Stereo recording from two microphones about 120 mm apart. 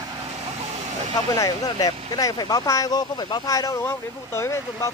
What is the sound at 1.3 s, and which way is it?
Speech, 30° left (ahead or behind).